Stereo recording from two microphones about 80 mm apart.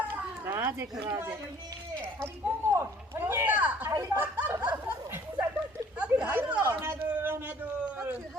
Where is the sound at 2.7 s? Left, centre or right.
Right.